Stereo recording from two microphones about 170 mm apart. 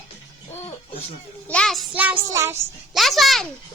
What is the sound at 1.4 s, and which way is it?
Child singing, 5° left (ahead or behind).